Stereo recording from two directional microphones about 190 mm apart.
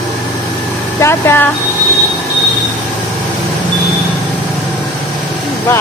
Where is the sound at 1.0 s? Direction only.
10° left (ahead or behind).